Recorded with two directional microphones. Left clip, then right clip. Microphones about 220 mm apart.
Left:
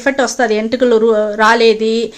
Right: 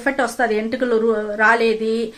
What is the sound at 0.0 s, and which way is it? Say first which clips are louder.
Speech: left 5 dB; 30° left (ahead or behind).